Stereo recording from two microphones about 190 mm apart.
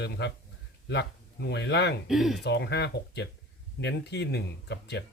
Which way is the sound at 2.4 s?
60° left (ahead or behind).